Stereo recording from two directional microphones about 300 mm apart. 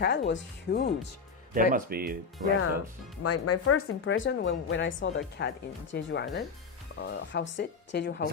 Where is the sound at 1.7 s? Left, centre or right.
Right.